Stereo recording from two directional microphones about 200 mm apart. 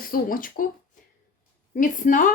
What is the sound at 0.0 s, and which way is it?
Speech, 45° left (ahead or behind).